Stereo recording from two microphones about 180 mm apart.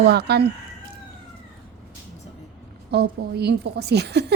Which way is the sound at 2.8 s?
65° right (ahead or behind).